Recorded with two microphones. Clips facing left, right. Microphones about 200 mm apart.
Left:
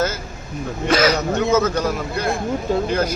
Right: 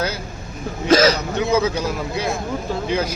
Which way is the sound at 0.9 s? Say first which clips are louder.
Right 3 dB; 30° right (ahead or behind).